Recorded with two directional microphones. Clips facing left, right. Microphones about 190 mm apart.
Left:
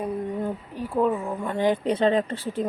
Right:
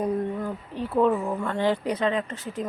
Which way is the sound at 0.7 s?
10° left (ahead or behind).